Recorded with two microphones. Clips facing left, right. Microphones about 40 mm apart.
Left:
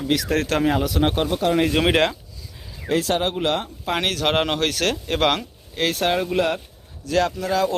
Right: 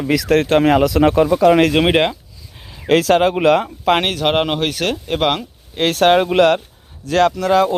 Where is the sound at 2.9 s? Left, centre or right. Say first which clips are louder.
Right 8 dB; right.